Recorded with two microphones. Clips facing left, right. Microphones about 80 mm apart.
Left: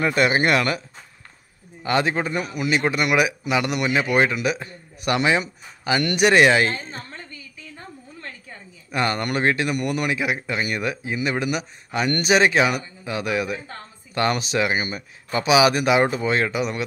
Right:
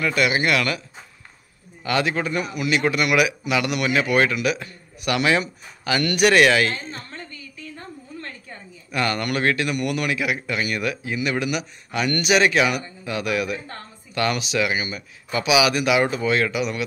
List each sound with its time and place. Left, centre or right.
0.0 s speech: left
7.7 s a sound: centre
8.9 s speech: left